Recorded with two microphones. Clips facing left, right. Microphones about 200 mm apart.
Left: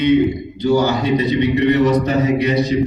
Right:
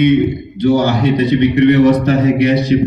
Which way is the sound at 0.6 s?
55° right (ahead or behind).